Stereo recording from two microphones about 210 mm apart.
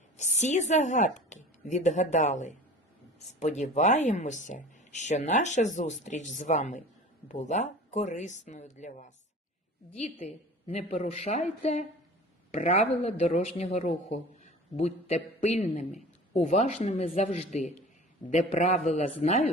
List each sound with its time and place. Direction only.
0.2 s speech: 35° left (ahead or behind)